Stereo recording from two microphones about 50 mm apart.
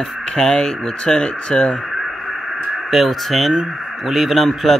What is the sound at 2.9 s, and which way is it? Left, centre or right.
Speech, centre.